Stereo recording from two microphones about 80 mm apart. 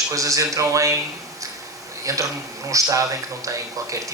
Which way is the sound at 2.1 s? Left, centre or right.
Right.